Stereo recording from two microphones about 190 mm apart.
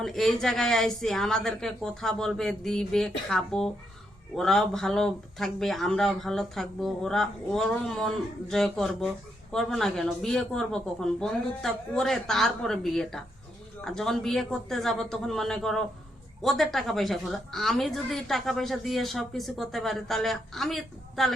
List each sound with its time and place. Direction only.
0.0 s a woman's voice: centre (ahead or behind)